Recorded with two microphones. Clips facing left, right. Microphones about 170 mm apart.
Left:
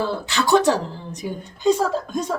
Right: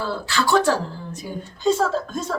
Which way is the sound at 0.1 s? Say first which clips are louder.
Right 1 dB; 20° left (ahead or behind).